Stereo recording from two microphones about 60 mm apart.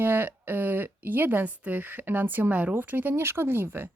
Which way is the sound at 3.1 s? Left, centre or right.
Right.